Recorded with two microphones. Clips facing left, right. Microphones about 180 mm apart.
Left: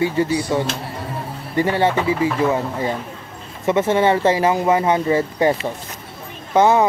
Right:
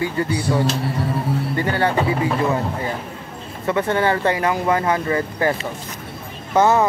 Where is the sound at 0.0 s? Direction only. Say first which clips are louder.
Left 3 dB; 25° left (ahead or behind).